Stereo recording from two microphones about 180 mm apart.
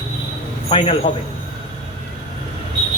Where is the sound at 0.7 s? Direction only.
30° left (ahead or behind).